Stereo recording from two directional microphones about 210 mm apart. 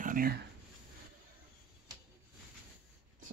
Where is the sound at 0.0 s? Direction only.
40° right (ahead or behind).